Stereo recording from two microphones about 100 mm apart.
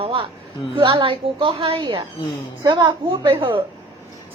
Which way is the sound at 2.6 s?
40° right (ahead or behind).